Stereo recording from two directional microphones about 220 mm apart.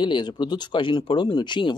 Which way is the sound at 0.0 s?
20° left (ahead or behind).